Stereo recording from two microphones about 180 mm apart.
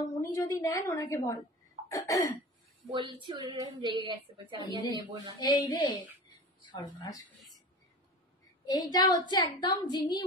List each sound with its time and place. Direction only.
0.0 s a woman's voice: 15° left (ahead or behind)
1.9 s cough: 15° left (ahead or behind)
3.3 s a woman's voice: 25° right (ahead or behind)
5.4 s a woman's voice: 20° left (ahead or behind)
8.6 s a woman's voice: 20° left (ahead or behind)